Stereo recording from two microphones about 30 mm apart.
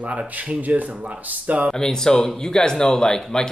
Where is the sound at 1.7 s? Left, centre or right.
Left.